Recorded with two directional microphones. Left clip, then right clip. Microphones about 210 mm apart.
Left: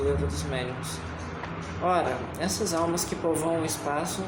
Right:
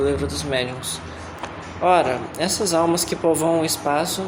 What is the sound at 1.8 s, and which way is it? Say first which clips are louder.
Speech: right 8 dB; 20° right (ahead or behind).